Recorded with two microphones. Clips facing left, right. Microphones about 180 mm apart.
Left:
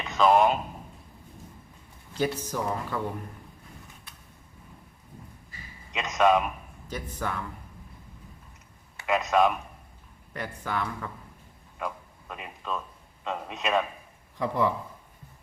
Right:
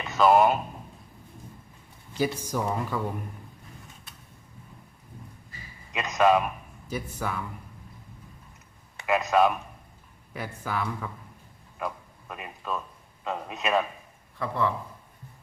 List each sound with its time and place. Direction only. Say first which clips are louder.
0.0 s a man's voice: right 1 dB; 5° right (ahead or behind)
2.1 s speech: right 1 dB; 10° right (ahead or behind)
5.9 s a man's voice: right 1 dB; 5° right (ahead or behind)
9.0 s speech: right 1 dB; centre (ahead or behind)
14.3 s a man's voice: left 2 dB; 15° left (ahead or behind)